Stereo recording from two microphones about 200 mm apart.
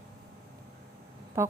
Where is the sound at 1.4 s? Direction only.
15° right (ahead or behind).